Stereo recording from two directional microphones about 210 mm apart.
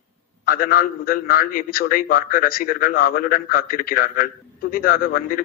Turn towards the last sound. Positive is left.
turn(degrees=40)  # may be behind; listen again after turning